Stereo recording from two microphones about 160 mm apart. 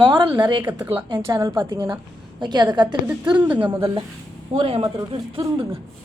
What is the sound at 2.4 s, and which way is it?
Speech, 30° right (ahead or behind).